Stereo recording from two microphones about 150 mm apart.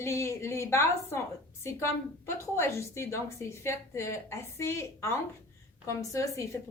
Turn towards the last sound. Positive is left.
turn(degrees=20)  # may be behind; listen again after turning